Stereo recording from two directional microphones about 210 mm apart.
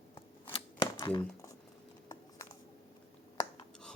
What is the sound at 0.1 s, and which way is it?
Scissors, 25° left (ahead or behind).